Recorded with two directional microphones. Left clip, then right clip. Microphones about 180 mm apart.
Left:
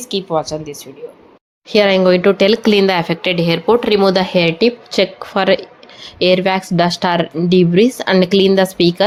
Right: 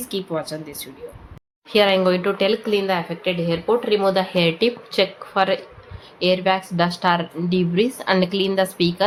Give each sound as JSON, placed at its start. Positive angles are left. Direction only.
{"t": 0.3, "sound": "speech", "side_deg": 20}
{"t": 1.7, "sound": "speech", "side_deg": 35}
{"t": 2.6, "sound": "a woman's voice", "side_deg": 55}
{"t": 4.4, "sound": "speech", "side_deg": 25}